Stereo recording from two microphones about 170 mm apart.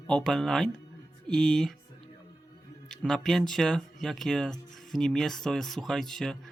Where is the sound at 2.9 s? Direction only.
5° left (ahead or behind).